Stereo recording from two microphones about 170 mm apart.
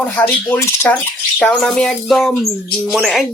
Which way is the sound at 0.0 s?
10° left (ahead or behind).